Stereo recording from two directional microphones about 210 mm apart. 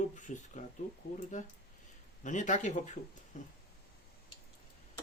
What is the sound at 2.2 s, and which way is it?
Speech, 35° left (ahead or behind).